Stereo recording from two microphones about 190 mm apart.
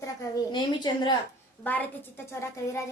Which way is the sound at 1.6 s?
10° left (ahead or behind).